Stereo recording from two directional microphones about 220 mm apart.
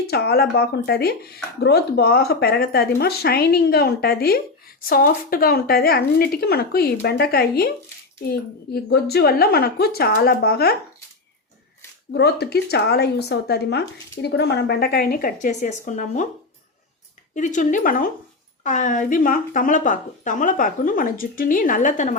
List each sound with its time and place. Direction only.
0.1 s speech: 45° left (ahead or behind)
12.1 s speech: 50° left (ahead or behind)
17.3 s a woman's voice: 35° left (ahead or behind)